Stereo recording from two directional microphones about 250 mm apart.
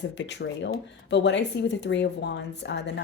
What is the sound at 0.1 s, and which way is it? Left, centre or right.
Speech, left.